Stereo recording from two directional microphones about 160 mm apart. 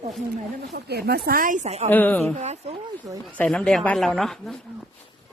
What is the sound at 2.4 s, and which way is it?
Speech, 45° right (ahead or behind).